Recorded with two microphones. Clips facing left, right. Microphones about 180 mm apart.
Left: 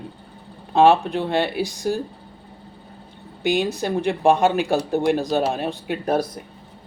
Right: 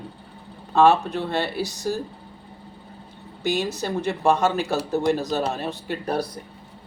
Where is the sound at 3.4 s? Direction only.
55° left (ahead or behind).